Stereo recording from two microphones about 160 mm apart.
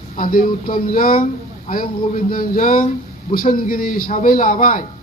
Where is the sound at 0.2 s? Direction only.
60° left (ahead or behind).